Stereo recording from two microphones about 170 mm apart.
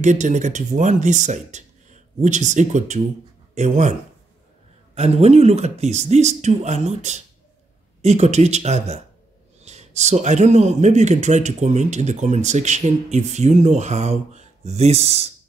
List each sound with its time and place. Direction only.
0.0 s speech: 45° right (ahead or behind)
4.9 s speech: 40° right (ahead or behind)